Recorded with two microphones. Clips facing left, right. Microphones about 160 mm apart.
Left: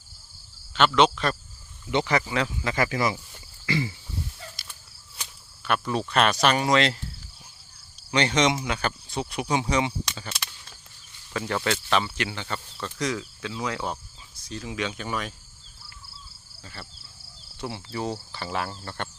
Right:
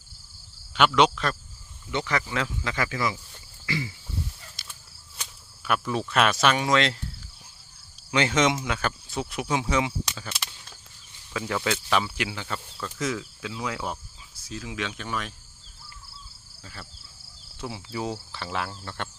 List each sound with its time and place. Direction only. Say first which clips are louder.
0.7 s cricket: even; 10° right (ahead or behind)
1.9 s speech: left 4 dB; 15° left (ahead or behind)
2.3 s speech: left 2 dB; centre (ahead or behind)
2.6 s speech: left 4 dB; 45° left (ahead or behind)
4.6 s cricket: even; centre (ahead or behind)
5.6 s speech: left 1 dB; 5° right (ahead or behind)
8.1 s speech: even; 5° right (ahead or behind)
11.3 s speech: left 1 dB; centre (ahead or behind)
17.6 s speech: left 1 dB; centre (ahead or behind)